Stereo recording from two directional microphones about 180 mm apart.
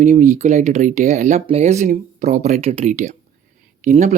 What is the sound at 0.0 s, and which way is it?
A man's voice, 45° right (ahead or behind).